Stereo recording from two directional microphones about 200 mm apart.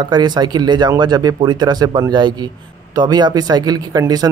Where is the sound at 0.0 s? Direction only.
20° right (ahead or behind).